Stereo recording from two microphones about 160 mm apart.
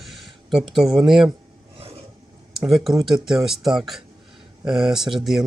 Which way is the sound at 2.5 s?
Centre (ahead or behind).